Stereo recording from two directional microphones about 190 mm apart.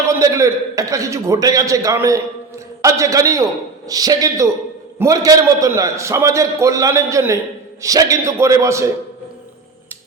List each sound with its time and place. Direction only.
0.2 s a man's voice: 15° right (ahead or behind)